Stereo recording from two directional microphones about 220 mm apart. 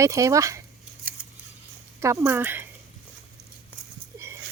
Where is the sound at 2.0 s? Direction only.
15° right (ahead or behind).